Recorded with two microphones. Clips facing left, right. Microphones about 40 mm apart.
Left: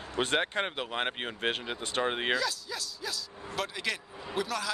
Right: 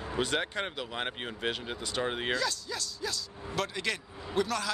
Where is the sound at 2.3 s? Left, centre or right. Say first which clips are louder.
Even; centre.